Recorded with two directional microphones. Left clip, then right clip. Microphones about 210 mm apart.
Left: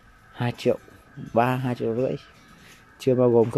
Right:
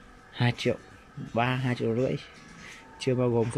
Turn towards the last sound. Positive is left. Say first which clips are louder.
# left 8 dB
turn(degrees=15)  # may be behind; listen again after turning